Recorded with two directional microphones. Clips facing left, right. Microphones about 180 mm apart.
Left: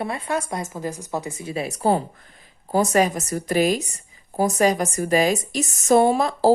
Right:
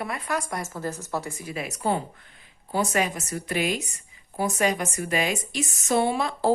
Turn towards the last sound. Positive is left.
turn(degrees=40)  # may be behind; listen again after turning